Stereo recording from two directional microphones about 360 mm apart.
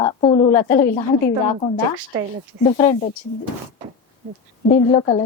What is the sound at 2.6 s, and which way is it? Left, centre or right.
Speech, centre.